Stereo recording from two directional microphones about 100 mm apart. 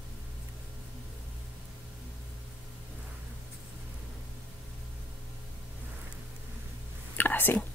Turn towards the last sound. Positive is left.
turn(degrees=20)  # may be behind; listen again after turning